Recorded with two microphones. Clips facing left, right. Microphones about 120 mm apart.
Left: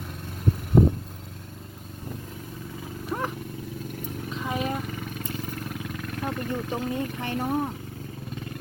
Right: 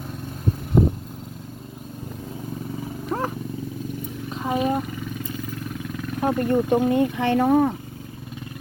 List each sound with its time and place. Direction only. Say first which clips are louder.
3.1 s a sound: right 4 dB; 30° right (ahead or behind)
4.3 s vehicle: right 7 dB; 40° right (ahead or behind)
6.2 s speech: right 11 dB; 55° right (ahead or behind); by 7.7 s 75° right (ahead or behind)